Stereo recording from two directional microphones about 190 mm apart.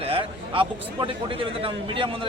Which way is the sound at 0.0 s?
30° right (ahead or behind).